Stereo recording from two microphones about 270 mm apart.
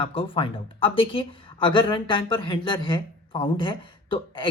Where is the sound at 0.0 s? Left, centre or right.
Centre.